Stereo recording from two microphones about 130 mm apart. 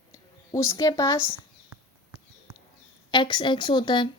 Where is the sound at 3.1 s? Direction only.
35° left (ahead or behind).